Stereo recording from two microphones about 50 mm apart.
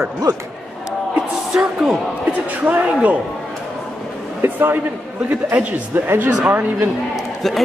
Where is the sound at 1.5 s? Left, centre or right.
Centre.